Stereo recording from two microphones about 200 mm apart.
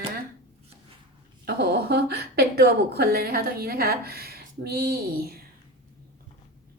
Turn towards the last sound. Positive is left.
turn(degrees=-50)  # may be behind; listen again after turning